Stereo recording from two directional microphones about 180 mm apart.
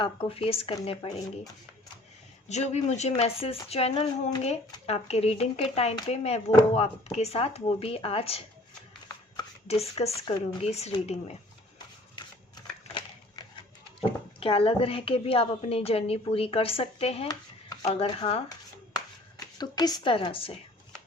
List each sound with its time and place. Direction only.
0.0 s speech: 30° left (ahead or behind)
2.5 s speech: 40° left (ahead or behind)
9.6 s speech: 35° left (ahead or behind)
14.0 s speech: 30° left (ahead or behind)
19.5 s a woman's voice: 20° left (ahead or behind)